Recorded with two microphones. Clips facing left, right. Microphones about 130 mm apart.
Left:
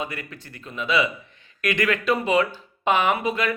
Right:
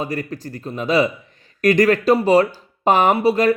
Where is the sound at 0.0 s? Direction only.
40° right (ahead or behind).